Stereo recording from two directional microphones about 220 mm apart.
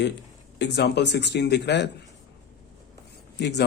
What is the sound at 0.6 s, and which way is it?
Speech, 50° left (ahead or behind).